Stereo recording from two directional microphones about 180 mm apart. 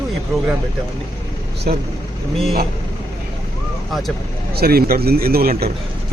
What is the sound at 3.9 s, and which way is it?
Speech, centre (ahead or behind).